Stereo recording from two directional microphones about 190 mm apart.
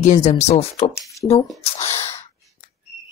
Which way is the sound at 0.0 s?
40° left (ahead or behind).